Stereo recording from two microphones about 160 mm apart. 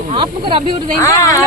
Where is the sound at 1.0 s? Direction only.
20° left (ahead or behind).